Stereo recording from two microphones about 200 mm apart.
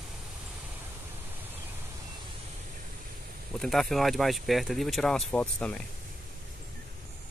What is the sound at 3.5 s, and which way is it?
Speech, centre (ahead or behind).